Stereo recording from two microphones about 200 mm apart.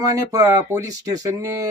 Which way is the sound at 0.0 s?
15° right (ahead or behind).